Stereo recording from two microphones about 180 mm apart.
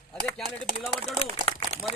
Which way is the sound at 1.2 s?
35° left (ahead or behind).